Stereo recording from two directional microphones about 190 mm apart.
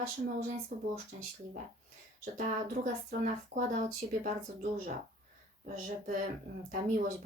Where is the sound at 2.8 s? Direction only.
40° right (ahead or behind).